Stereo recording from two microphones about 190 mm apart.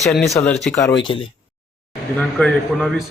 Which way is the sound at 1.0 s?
30° left (ahead or behind).